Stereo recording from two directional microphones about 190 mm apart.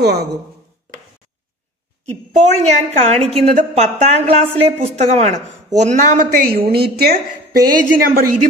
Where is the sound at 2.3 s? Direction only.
35° right (ahead or behind).